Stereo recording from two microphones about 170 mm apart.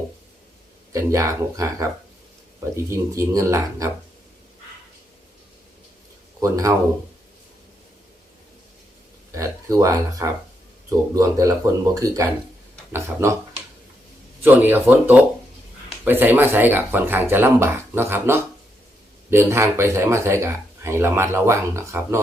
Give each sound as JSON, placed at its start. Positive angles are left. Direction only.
{"t": 0.9, "sound": "speech", "side_deg": -20}
{"t": 6.4, "sound": "speech", "side_deg": -20}
{"t": 9.3, "sound": "speech", "side_deg": -20}
{"t": 14.4, "sound": "speech", "side_deg": -10}